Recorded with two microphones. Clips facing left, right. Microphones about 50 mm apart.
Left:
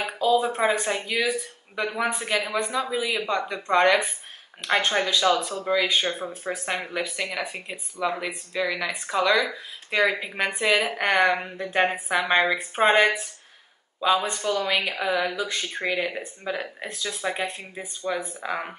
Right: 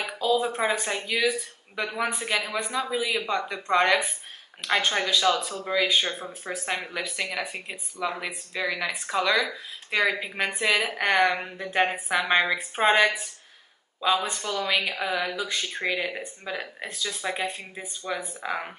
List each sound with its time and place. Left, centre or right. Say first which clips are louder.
0.2 s speech: left 3 dB; centre